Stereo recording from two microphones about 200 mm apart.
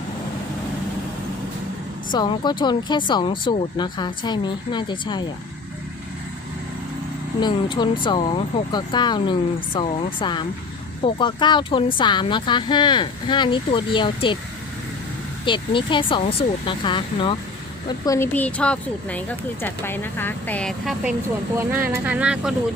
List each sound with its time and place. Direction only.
2.1 s speech: 20° left (ahead or behind)
7.4 s speech: 25° left (ahead or behind)
15.4 s a woman's voice: 25° left (ahead or behind); by 21.1 s centre (ahead or behind)
21.7 s speech: 10° right (ahead or behind)